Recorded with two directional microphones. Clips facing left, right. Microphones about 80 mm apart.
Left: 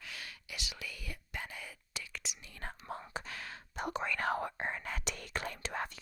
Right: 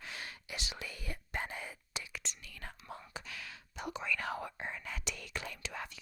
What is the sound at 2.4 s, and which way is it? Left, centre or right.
Speech, left.